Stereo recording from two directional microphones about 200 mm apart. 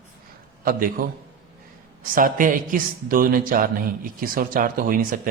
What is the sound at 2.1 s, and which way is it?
A man's voice, 45° right (ahead or behind).